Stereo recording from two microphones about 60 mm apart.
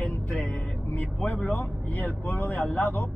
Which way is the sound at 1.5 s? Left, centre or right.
Left.